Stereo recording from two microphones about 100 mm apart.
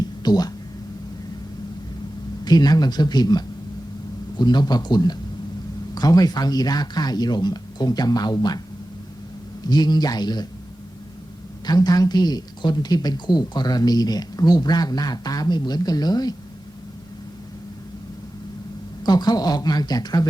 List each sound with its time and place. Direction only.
0.2 s speech: 40° left (ahead or behind)
2.4 s speech: 40° left (ahead or behind)
9.6 s speech: 45° left (ahead or behind)
11.6 s speech: 45° left (ahead or behind)
19.0 s speech: 45° left (ahead or behind)